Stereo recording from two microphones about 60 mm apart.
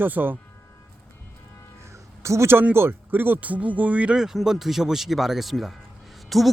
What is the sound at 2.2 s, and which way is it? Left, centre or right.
Speech, right.